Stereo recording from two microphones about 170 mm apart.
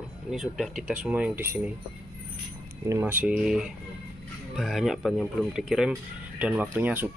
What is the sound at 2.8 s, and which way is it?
Speech, 15° right (ahead or behind).